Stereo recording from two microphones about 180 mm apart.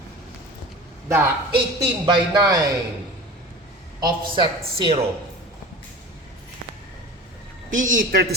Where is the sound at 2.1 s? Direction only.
25° right (ahead or behind).